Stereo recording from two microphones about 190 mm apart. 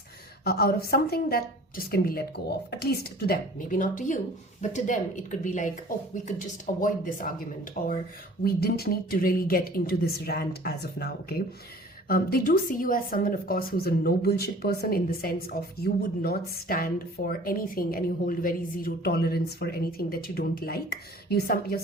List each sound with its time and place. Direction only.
0.4 s a woman's voice: 55° left (ahead or behind)
6.7 s a woman's voice: 45° left (ahead or behind)